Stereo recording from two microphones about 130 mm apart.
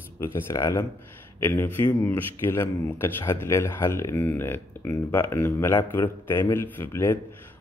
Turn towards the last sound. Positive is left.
turn(degrees=15)  # may be behind; listen again after turning